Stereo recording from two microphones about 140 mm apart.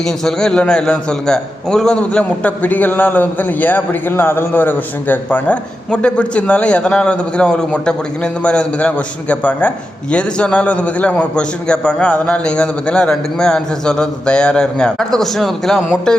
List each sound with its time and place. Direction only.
0.0 s a man's voice: 5° left (ahead or behind)